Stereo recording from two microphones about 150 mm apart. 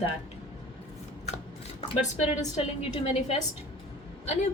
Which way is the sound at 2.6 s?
45° left (ahead or behind).